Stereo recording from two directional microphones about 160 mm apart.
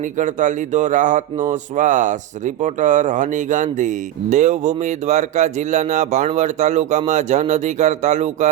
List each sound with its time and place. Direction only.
0.2 s speech: 50° right (ahead or behind)